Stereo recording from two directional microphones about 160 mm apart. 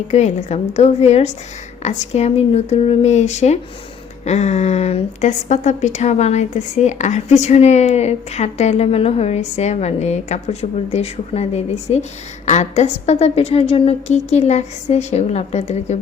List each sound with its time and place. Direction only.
0.1 s a woman's voice: 45° left (ahead or behind)